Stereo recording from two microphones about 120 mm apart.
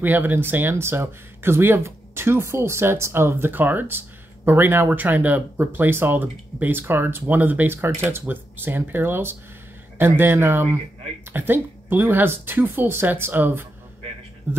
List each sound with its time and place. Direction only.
0.0 s speech: 15° right (ahead or behind)